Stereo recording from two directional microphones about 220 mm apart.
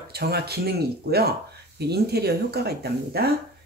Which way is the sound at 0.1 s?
45° right (ahead or behind).